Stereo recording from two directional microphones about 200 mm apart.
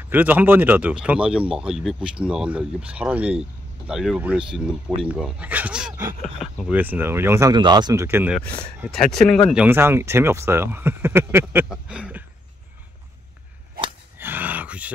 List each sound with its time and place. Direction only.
0.1 s speech: 10° right (ahead or behind)
8.4 s speech: 5° left (ahead or behind)
9.5 s speech: 10° right (ahead or behind)
14.1 s a sound: 10° right (ahead or behind)